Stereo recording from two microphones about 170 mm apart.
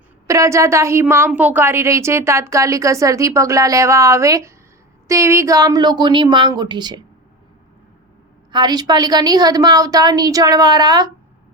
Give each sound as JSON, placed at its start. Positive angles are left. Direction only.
{"t": 0.3, "sound": "a woman's voice", "side_deg": -15}
{"t": 8.5, "sound": "a woman's voice", "side_deg": -25}